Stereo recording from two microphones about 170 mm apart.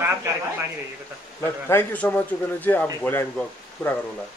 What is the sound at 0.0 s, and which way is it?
Speech, 15° right (ahead or behind).